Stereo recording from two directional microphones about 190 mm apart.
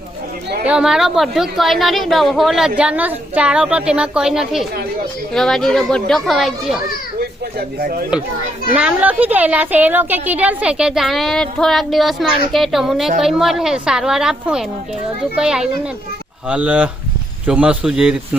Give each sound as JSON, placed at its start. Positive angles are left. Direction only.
{"t": 0.6, "sound": "a woman's voice", "side_deg": -5}
{"t": 7.8, "sound": "speech", "side_deg": -50}
{"t": 8.7, "sound": "a woman's voice", "side_deg": -5}